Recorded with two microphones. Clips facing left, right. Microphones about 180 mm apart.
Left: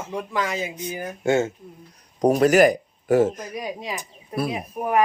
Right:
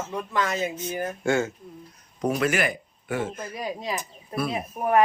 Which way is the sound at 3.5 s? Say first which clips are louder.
Even; 15° left (ahead or behind).